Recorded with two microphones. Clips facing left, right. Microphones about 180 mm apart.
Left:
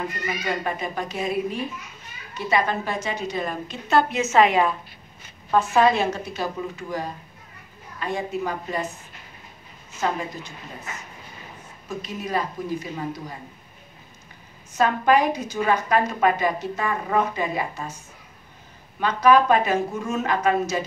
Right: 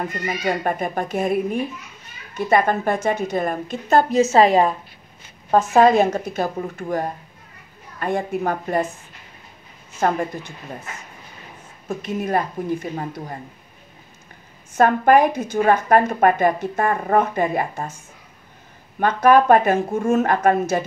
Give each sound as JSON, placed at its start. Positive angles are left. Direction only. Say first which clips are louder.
{"t": 0.3, "sound": "a woman's voice", "louder": "right 5 dB", "side_deg": -50}
{"t": 12.0, "sound": "a woman's voice", "louder": "right 5 dB", "side_deg": -55}
{"t": 14.8, "sound": "a woman's voice", "louder": "right 5 dB", "side_deg": -55}
{"t": 18.9, "sound": "a woman's voice", "louder": "right 3 dB", "side_deg": -55}